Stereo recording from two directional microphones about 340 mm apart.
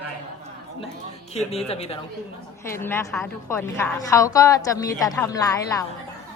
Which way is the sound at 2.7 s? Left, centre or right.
Centre.